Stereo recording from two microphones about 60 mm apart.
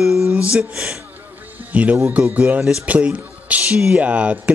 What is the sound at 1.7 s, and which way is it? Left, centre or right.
Speech, right.